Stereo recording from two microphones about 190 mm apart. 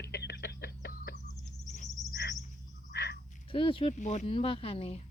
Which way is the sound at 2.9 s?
60° left (ahead or behind).